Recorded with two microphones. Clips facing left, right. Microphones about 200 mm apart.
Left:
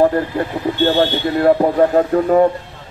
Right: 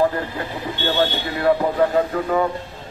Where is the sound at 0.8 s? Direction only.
40° left (ahead or behind).